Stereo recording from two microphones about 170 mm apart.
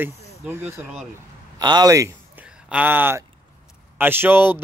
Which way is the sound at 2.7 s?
10° right (ahead or behind).